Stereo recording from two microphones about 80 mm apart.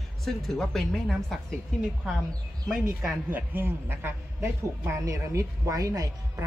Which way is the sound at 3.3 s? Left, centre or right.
Right.